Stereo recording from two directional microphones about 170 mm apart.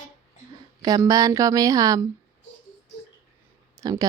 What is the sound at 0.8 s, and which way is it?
Speech, 20° right (ahead or behind).